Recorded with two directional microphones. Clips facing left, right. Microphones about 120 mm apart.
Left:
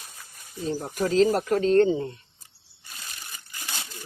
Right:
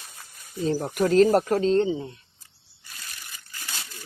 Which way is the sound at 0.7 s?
75° right (ahead or behind).